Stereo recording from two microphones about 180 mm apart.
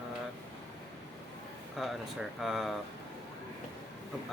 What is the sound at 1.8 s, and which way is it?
Speech, centre (ahead or behind).